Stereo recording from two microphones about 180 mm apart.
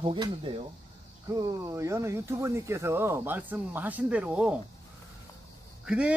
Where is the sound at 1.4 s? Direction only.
15° right (ahead or behind).